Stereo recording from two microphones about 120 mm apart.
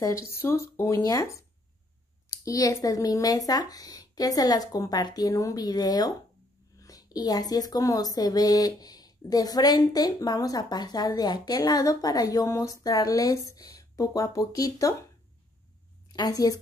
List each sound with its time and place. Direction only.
0.0 s speech: 25° left (ahead or behind)
16.1 s a woman's voice: 35° left (ahead or behind)